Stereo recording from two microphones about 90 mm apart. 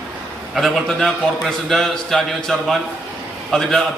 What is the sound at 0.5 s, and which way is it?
A man's voice, centre (ahead or behind).